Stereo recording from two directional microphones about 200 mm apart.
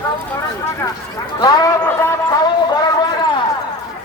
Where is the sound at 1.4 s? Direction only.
20° left (ahead or behind).